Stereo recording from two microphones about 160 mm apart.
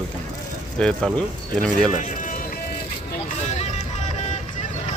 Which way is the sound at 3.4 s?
45° left (ahead or behind).